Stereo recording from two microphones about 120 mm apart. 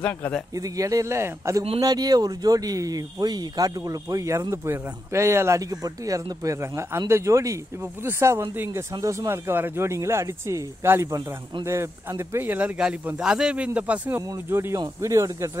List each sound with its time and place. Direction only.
0.0 s speech: 10° left (ahead or behind)
0.6 s speech: 30° right (ahead or behind)
14.2 s speech: 25° right (ahead or behind)